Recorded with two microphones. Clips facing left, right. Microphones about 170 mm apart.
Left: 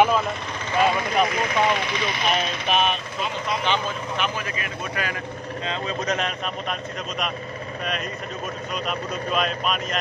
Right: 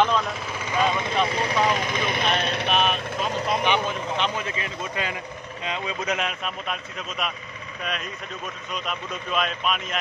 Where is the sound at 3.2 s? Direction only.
40° right (ahead or behind).